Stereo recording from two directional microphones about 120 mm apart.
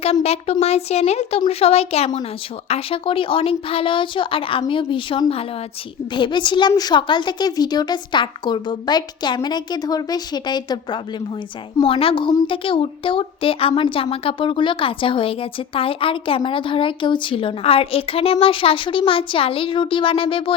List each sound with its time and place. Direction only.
0.0 s a woman's voice: 60° left (ahead or behind); by 11.0 s 40° left (ahead or behind)
11.8 s speech: 50° left (ahead or behind)